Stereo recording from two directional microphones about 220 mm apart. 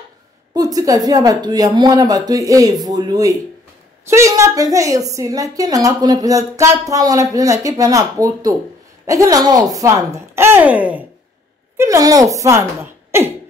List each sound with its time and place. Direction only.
0.6 s a woman's voice: 15° right (ahead or behind)